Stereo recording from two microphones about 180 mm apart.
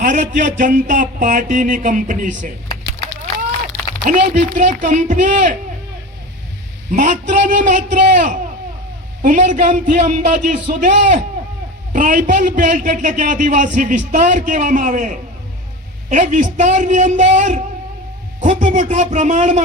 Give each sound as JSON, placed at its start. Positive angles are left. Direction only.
{"t": 0.0, "sound": "a man's voice", "side_deg": -45}
{"t": 4.0, "sound": "a man's voice", "side_deg": -45}
{"t": 6.9, "sound": "a man's voice", "side_deg": -45}